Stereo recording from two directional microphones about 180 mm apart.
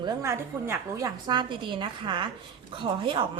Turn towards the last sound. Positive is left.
turn(degrees=-25)  # may be behind; listen again after turning